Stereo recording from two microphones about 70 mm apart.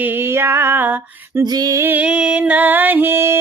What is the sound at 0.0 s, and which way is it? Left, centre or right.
Female singing, right.